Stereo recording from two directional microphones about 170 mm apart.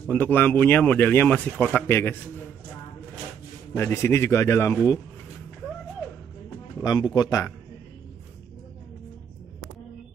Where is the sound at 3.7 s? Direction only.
15° left (ahead or behind).